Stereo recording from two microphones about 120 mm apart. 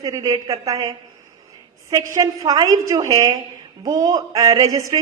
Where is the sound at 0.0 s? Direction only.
30° right (ahead or behind).